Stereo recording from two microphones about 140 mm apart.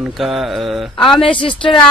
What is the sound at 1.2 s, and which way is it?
Music, 35° left (ahead or behind).